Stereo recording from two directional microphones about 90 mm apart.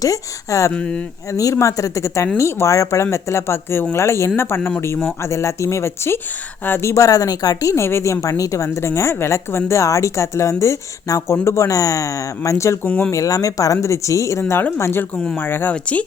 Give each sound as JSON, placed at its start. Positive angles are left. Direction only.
{"t": 0.0, "sound": "a woman's voice", "side_deg": 40}
{"t": 0.7, "sound": "speech", "side_deg": 10}
{"t": 1.3, "sound": "a woman's voice", "side_deg": 35}
{"t": 12.8, "sound": "speech", "side_deg": 15}
{"t": 13.1, "sound": "a woman's voice", "side_deg": 40}
{"t": 15.1, "sound": "speech", "side_deg": 10}
{"t": 15.4, "sound": "speech", "side_deg": 25}